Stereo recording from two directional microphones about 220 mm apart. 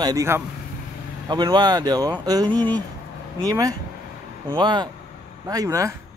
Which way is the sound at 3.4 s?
15° right (ahead or behind).